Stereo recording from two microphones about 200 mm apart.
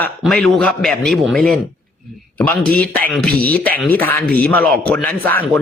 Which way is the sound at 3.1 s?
5° left (ahead or behind).